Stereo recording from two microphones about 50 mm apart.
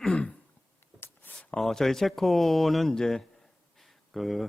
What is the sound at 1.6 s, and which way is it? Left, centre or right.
Speech, centre.